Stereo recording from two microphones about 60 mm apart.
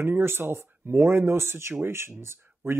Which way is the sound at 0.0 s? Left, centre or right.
Right.